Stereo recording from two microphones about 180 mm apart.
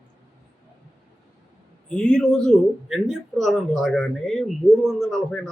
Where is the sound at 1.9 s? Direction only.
5° left (ahead or behind).